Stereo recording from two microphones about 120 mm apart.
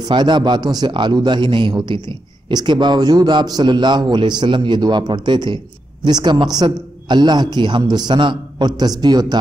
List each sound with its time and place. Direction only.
0.0 s a man's voice: 40° right (ahead or behind)